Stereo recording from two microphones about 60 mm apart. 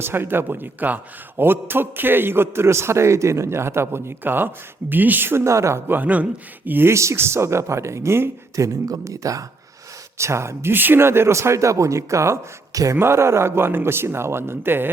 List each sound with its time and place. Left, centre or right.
0.0 s a man's voice: right
5.5 s speech: right
5.9 s a man's voice: right
6.9 s speech: right
8.5 s speech: right
10.2 s speech: right
13.0 s speech: right